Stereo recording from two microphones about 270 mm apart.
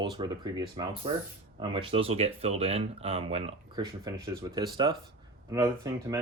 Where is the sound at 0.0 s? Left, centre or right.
Centre.